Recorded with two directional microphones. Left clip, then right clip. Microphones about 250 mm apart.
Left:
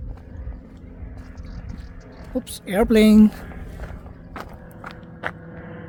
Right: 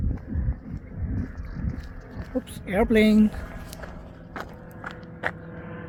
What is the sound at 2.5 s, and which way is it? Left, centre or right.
Speech, left.